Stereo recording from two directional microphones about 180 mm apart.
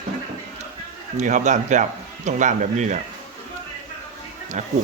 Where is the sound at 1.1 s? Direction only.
40° right (ahead or behind).